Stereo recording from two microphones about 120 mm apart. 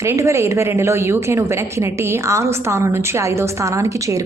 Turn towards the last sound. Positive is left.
turn(degrees=-25)  # may be behind; listen again after turning